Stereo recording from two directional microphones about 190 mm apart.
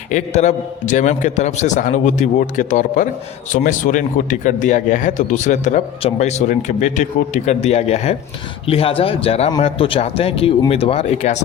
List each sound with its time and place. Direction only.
0.1 s speech: 40° left (ahead or behind)